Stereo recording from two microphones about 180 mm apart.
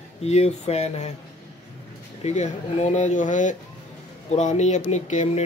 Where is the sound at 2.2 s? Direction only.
35° left (ahead or behind).